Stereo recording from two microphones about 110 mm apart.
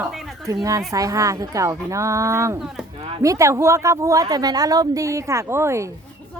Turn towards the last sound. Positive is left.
turn(degrees=-25)  # may be behind; listen again after turning